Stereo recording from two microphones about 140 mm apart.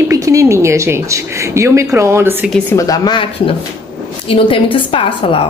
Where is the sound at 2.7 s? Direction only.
30° left (ahead or behind).